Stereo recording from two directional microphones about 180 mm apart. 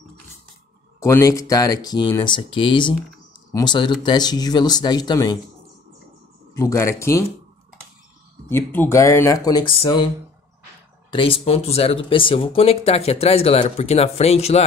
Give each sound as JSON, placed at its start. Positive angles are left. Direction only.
{"t": 0.9, "sound": "speech", "side_deg": 15}
{"t": 6.5, "sound": "speech", "side_deg": 15}
{"t": 8.5, "sound": "speech", "side_deg": 15}
{"t": 11.1, "sound": "speech", "side_deg": 30}